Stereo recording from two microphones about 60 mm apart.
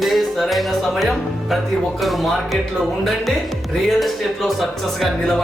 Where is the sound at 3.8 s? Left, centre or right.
Centre.